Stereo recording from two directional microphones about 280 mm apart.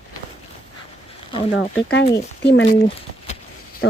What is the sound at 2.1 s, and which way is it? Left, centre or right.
Speech, left.